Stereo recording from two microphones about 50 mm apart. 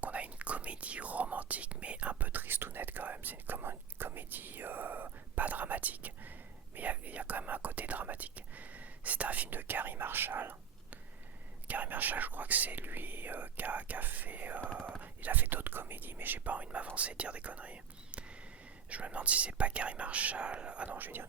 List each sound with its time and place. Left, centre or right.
0.0 s speech: right
11.7 s speech: right